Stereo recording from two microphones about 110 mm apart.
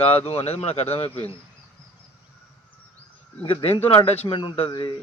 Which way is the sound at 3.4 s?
60° left (ahead or behind).